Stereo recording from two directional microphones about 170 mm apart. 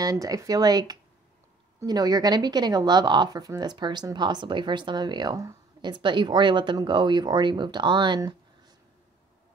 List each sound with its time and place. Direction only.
0.0 s a woman's voice: 20° right (ahead or behind)